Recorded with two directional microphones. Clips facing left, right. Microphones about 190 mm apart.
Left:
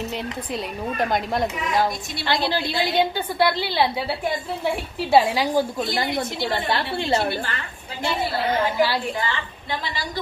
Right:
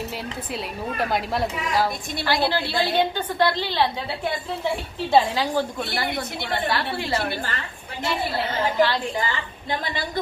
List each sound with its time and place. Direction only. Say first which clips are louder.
0.5 s speech: left 1 dB; 5° right (ahead or behind)
2.2 s a woman's voice: even; 20° left (ahead or behind)
5.1 s a woman's voice: left 2 dB; 10° left (ahead or behind)
6.1 s a woman's voice: left 3 dB; 25° left (ahead or behind)
8.7 s a woman's voice: right 1 dB; 10° left (ahead or behind)